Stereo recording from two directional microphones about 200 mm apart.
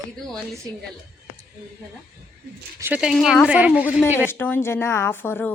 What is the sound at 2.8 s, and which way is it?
Speech, 10° right (ahead or behind).